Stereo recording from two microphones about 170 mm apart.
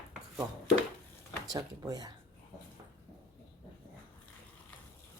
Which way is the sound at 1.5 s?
20° right (ahead or behind).